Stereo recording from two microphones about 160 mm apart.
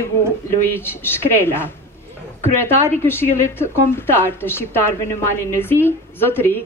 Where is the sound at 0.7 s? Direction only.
15° left (ahead or behind).